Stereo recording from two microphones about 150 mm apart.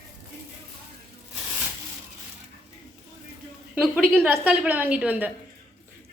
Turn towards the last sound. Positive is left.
turn(degrees=-10)  # may be behind; listen again after turning